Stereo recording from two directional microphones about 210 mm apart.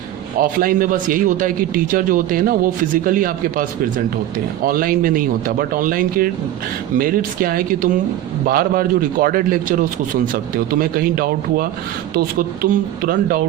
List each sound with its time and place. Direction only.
0.3 s a man's voice: 40° right (ahead or behind)